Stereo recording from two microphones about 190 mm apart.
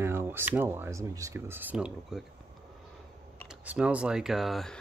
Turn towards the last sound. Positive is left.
turn(degrees=0)  # may be behind; listen again after turning